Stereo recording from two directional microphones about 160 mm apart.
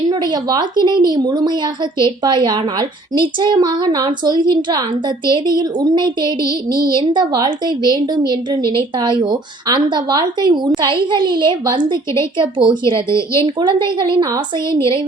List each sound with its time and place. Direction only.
0.1 s a woman's voice: 25° right (ahead or behind)